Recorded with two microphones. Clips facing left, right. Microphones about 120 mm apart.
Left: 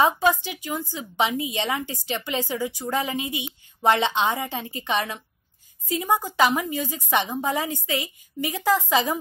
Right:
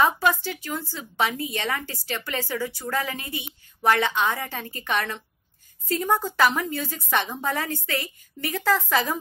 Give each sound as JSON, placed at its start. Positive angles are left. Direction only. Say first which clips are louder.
{"t": 0.0, "sound": "a woman's voice", "louder": "left 1 dB", "side_deg": 15}